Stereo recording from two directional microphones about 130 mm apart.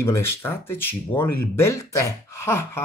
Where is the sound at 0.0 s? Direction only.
20° left (ahead or behind).